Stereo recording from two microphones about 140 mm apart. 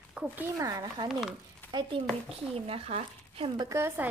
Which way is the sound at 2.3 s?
45° right (ahead or behind).